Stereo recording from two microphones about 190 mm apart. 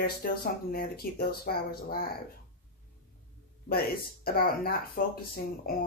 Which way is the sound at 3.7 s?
55° left (ahead or behind).